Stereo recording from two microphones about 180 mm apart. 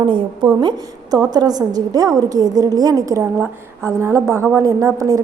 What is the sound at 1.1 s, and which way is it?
A woman's voice, 20° right (ahead or behind).